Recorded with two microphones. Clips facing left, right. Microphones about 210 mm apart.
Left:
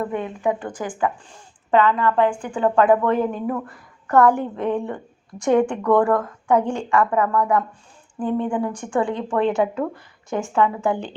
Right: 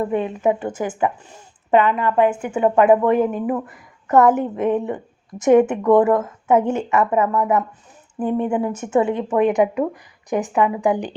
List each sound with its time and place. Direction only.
0.0 s speech: 20° right (ahead or behind)
2.6 s speech: 10° right (ahead or behind)